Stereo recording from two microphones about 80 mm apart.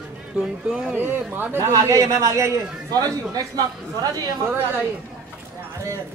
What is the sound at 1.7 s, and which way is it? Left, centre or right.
Speech, right.